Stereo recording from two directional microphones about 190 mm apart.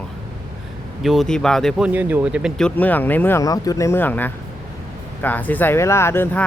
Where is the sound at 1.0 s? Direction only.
Centre (ahead or behind).